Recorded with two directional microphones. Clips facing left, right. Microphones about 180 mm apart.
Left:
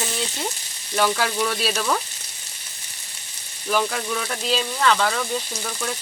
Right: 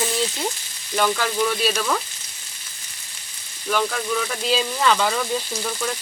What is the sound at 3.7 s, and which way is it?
Speech, 5° left (ahead or behind).